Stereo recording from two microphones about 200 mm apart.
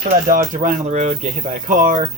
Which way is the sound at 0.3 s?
45° right (ahead or behind).